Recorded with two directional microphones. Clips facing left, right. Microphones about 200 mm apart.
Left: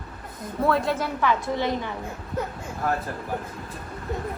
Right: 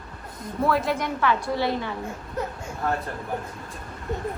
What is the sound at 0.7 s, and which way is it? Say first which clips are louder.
Speech: left 1 dB; centre (ahead or behind).